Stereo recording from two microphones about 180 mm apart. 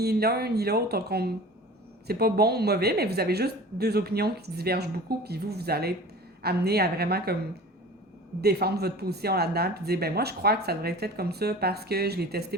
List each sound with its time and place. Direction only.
0.0 s speech: 60° right (ahead or behind)
8.4 s speech: 60° right (ahead or behind)